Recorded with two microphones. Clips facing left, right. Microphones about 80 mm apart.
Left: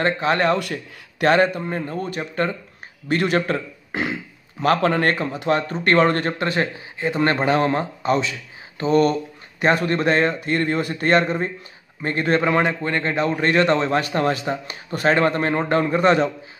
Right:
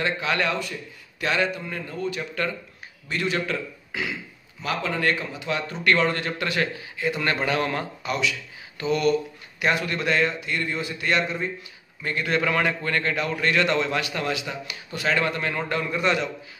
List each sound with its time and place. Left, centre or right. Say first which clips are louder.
0.0 s speech: left 6 dB; left
3.1 s speech: left 6 dB; left
4.6 s speech: left 9 dB; left
6.3 s speech: left 4 dB; left